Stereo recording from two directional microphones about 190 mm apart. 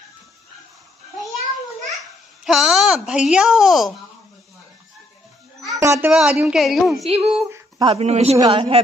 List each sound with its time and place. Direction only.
2.4 s speech: 5° right (ahead or behind)
5.7 s speech: 15° right (ahead or behind)
7.1 s a man's voice: 30° right (ahead or behind)
7.4 s a sound: 15° right (ahead or behind)
7.9 s a man's voice: 35° right (ahead or behind)